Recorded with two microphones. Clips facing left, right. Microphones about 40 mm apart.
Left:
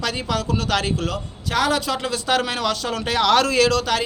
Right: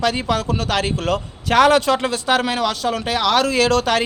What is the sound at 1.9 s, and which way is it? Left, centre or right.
Speech, right.